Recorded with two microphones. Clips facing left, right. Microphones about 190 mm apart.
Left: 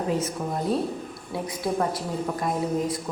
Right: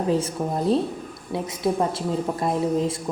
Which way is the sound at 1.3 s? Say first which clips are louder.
Right 4 dB; 25° right (ahead or behind).